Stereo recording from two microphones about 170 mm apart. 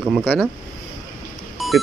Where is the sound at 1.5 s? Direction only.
Centre (ahead or behind).